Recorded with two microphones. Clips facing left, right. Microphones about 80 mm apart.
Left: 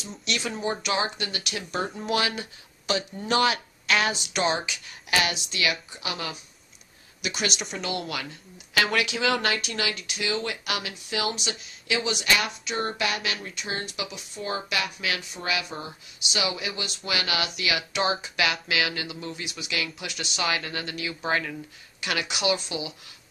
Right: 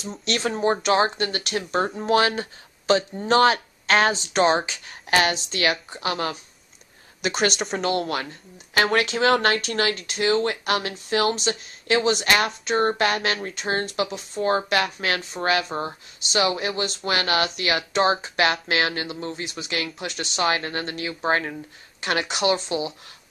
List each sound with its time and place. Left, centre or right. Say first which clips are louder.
0.0 s speech: right 5 dB; right